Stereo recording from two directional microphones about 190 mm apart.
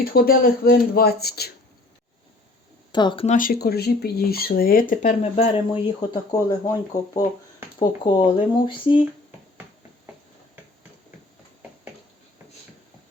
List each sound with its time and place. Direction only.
0.0 s speech: 50° left (ahead or behind)
2.9 s speech: 25° left (ahead or behind)
3.2 s speech: 45° left (ahead or behind)
5.2 s speech: 30° left (ahead or behind)
6.3 s speech: 20° left (ahead or behind)